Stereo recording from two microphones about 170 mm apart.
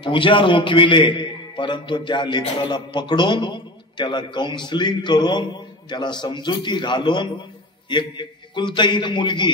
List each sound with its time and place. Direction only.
0.0 s a man's voice: 30° left (ahead or behind)